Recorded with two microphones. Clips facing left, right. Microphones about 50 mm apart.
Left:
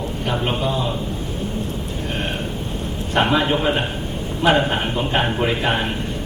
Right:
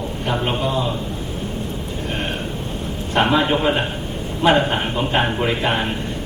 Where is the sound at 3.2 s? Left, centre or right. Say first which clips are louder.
Right 1 dB; centre.